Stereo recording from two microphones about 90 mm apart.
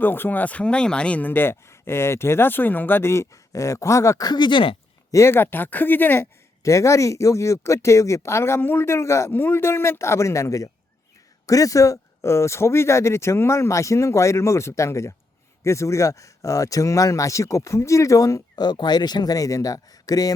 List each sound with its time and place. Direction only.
0.0 s speech: 20° left (ahead or behind)
4.3 s speech: 60° left (ahead or behind); by 4.8 s 75° left (ahead or behind)
5.1 s speech: 30° left (ahead or behind)
6.6 s speech: 35° left (ahead or behind)
18.6 s speech: 55° left (ahead or behind)